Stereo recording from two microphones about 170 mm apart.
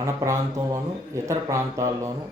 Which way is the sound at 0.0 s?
20° right (ahead or behind).